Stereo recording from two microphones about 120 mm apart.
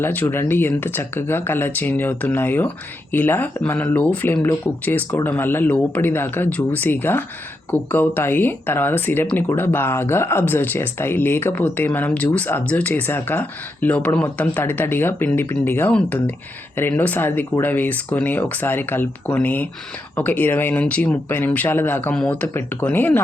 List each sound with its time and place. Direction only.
0.0 s speech: 15° left (ahead or behind)